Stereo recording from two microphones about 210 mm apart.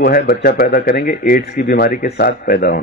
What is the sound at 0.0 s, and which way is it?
A man's voice, 45° left (ahead or behind).